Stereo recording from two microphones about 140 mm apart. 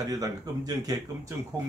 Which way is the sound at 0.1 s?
25° right (ahead or behind).